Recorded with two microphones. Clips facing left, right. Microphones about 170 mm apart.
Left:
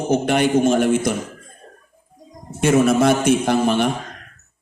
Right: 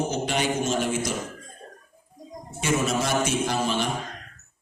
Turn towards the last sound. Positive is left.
turn(degrees=55)  # may be behind; listen again after turning